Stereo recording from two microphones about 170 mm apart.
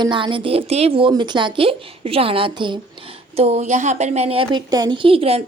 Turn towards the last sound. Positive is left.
turn(degrees=-35)  # may be behind; listen again after turning